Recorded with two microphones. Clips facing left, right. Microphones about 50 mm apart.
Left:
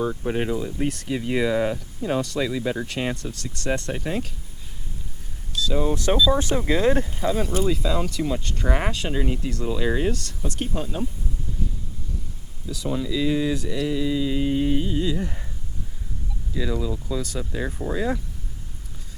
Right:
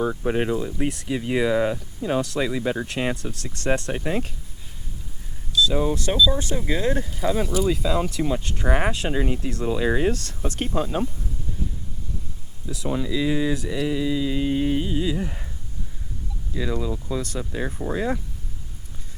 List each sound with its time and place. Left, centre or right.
0.0 s speech: centre
2.4 s speech: centre
3.4 s speech: right
3.8 s speech: centre
6.1 s speech: left
7.3 s speech: centre
9.5 s speech: right
9.7 s speech: centre
10.1 s speech: right
12.6 s speech: centre
16.6 s speech: centre